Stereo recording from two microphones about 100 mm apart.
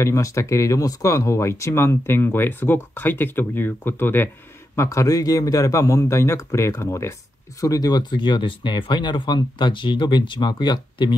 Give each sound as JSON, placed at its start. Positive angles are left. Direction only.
{"t": 0.0, "sound": "speech", "side_deg": 30}
{"t": 4.7, "sound": "speech", "side_deg": 35}